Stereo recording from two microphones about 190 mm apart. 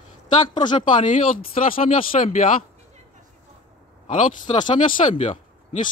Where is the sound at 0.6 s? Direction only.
25° left (ahead or behind).